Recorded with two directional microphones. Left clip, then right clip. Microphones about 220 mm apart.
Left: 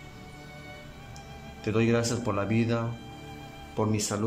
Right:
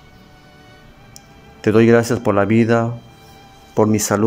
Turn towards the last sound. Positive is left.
turn(degrees=-35)  # may be behind; listen again after turning